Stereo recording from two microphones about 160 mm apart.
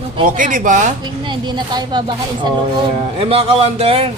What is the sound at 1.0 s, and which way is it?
Speech, 30° right (ahead or behind).